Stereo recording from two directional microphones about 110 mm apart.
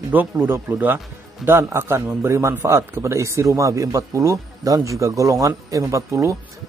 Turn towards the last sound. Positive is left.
turn(degrees=-30)  # may be behind; listen again after turning